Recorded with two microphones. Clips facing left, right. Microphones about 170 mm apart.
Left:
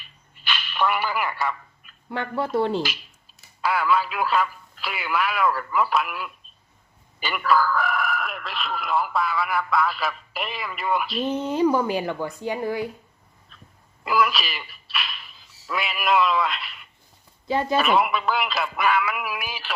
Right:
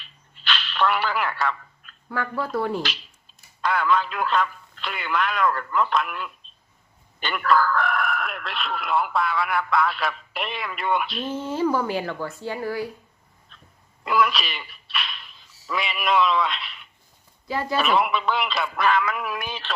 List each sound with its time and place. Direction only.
0.0 s a sound: 10° left (ahead or behind)
2.1 s speech: 25° left (ahead or behind)
3.6 s speech: 5° left (ahead or behind)
11.3 s speech: 20° left (ahead or behind)
13.5 s dog: centre (ahead or behind)
14.0 s a sound: centre (ahead or behind)
17.5 s speech: 20° left (ahead or behind)
17.7 s speech: centre (ahead or behind)